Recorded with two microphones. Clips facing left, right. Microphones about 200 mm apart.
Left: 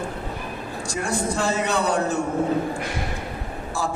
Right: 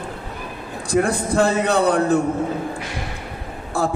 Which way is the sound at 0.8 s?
55° right (ahead or behind).